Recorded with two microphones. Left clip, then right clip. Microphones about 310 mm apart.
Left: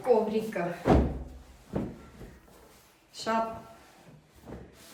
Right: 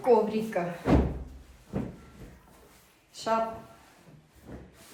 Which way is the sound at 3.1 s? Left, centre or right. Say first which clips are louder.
Right 2 dB; centre.